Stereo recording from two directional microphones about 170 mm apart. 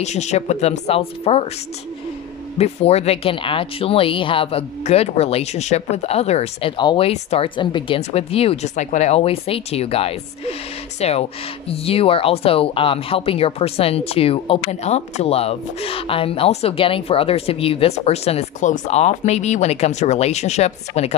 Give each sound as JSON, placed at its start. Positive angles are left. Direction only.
{"t": 0.0, "sound": "speech", "side_deg": 40}
{"t": 2.5, "sound": "speech", "side_deg": 40}
{"t": 6.8, "sound": "speech", "side_deg": 25}